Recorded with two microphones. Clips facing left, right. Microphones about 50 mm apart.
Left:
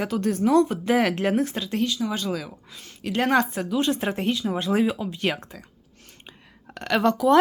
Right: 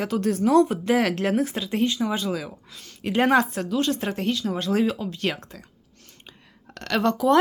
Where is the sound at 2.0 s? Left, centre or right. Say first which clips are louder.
Right 1 dB; centre.